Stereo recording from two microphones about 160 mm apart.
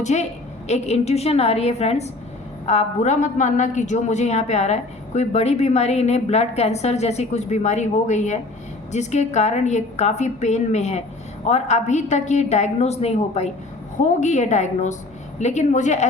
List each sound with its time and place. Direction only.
0.0 s a woman's voice: 45° left (ahead or behind)